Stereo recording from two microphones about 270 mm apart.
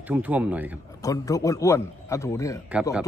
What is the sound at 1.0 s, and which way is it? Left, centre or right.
A man's voice, centre.